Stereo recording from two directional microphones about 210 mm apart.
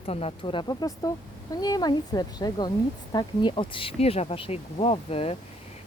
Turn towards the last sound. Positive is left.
turn(degrees=30)  # may be behind; listen again after turning